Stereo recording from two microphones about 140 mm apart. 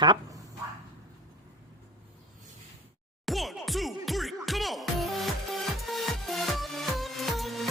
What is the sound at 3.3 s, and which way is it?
Music, centre (ahead or behind).